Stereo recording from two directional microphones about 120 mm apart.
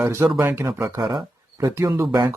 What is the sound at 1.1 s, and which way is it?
Speech, 35° right (ahead or behind).